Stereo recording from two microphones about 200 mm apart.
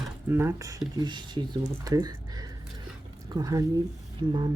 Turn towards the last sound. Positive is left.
turn(degrees=-20)  # may be behind; listen again after turning